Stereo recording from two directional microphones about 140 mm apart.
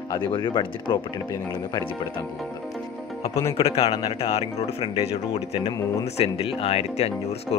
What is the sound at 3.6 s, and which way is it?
Speech, 45° left (ahead or behind).